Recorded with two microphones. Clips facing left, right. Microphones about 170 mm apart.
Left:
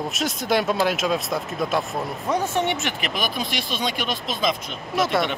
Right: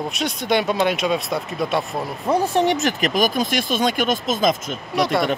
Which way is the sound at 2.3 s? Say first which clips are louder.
Right 5 dB; 35° right (ahead or behind).